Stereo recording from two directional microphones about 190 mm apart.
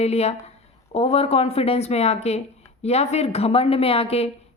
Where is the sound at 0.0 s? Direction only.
35° left (ahead or behind).